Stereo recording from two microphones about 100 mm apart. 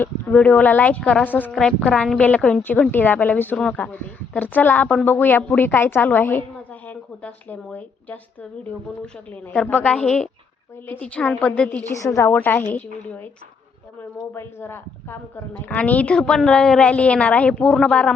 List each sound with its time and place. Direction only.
0.0 s a woman's voice: 15° left (ahead or behind)
1.5 s a woman's voice: 5° left (ahead or behind)
9.6 s a woman's voice: 15° left (ahead or behind)
11.9 s a woman's voice: 30° left (ahead or behind)
12.3 s a woman's voice: 20° left (ahead or behind)
14.3 s a woman's voice: 25° left (ahead or behind)